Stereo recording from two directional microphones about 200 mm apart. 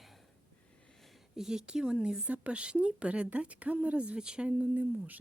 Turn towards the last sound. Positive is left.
turn(degrees=-10)  # may be behind; listen again after turning